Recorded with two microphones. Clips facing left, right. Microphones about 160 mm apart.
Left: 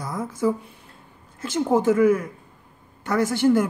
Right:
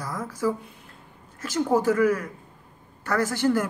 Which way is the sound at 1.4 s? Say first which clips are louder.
Left 2 dB; 25° left (ahead or behind).